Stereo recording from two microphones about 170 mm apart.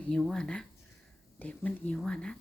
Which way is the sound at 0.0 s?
Centre (ahead or behind).